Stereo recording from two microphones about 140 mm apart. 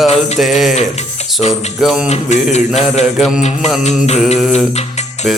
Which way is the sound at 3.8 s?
55° left (ahead or behind).